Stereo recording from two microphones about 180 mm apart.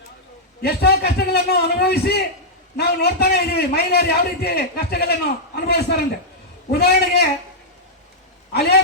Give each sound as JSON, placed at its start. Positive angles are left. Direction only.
{"t": 0.6, "sound": "a man's voice", "side_deg": 65}